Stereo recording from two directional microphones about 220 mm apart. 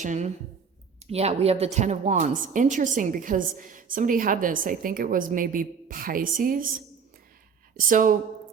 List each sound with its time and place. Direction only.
0.0 s a woman's voice: 35° right (ahead or behind)
7.9 s a woman's voice: 35° right (ahead or behind)